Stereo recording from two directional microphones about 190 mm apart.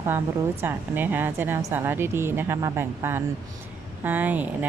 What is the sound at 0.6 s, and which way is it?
Speech, 10° right (ahead or behind).